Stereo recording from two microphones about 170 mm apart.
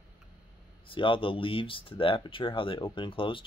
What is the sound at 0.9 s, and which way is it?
Speech, 30° left (ahead or behind).